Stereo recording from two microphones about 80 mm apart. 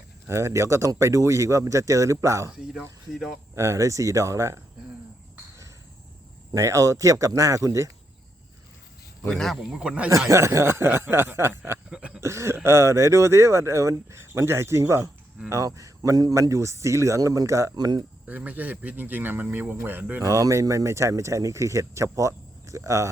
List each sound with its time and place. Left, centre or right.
0.3 s speech: right
3.5 s speech: right
6.5 s speech: right
9.2 s speech: centre
10.2 s speech: right
11.9 s a sound: centre
12.2 s speech: right
17.7 s speech: right
18.3 s speech: centre
20.2 s speech: right